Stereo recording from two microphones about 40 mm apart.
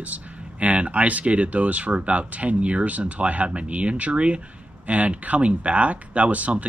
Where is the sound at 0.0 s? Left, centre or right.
Right.